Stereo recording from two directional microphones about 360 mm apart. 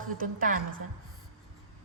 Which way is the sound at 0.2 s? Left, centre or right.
Right.